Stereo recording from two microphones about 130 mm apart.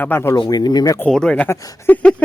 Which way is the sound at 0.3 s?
35° left (ahead or behind).